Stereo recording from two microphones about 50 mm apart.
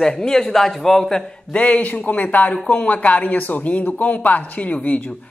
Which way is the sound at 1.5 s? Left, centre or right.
Left.